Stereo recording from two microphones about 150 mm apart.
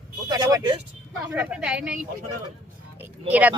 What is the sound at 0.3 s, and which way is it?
Speech, 25° right (ahead or behind).